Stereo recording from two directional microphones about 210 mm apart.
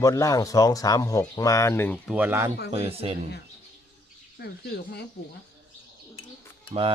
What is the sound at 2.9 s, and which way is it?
Speech, 25° right (ahead or behind).